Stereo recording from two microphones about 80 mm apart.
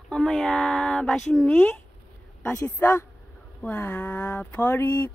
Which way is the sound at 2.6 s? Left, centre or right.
Left.